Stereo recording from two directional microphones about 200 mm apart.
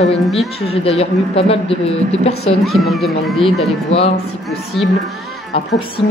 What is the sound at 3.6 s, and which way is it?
Speech, 30° left (ahead or behind).